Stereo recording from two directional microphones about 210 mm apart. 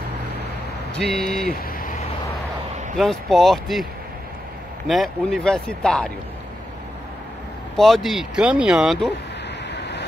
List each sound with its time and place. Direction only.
0.9 s speech: centre (ahead or behind)
1.5 s vehicle: 45° left (ahead or behind)
3.0 s speech: centre (ahead or behind)
4.8 s speech: centre (ahead or behind)
7.7 s speech: centre (ahead or behind)
9.7 s waves: 55° left (ahead or behind)